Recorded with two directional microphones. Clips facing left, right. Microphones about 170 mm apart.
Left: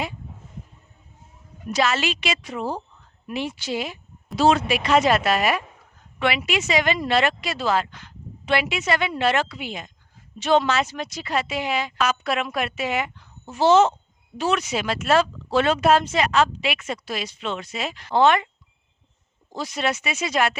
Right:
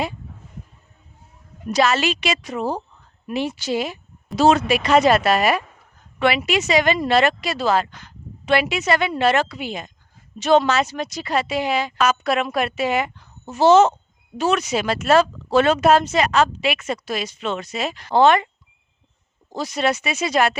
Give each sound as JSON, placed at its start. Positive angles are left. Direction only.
{"t": 1.7, "sound": "speech", "side_deg": -40}
{"t": 19.5, "sound": "speech", "side_deg": -40}